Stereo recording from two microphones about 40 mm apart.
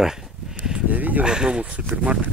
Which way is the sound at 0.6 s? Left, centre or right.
Right.